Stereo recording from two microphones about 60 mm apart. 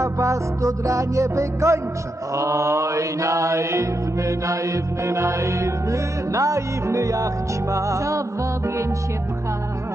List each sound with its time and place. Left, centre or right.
0.0 s music: right